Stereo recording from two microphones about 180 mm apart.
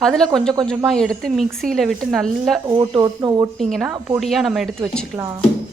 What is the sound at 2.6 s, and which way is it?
Speech, 20° right (ahead or behind).